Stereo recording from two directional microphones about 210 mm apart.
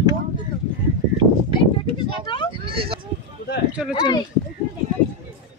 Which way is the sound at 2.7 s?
25° right (ahead or behind).